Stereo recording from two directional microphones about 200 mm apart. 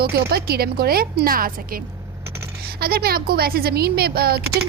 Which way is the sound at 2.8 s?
50° right (ahead or behind).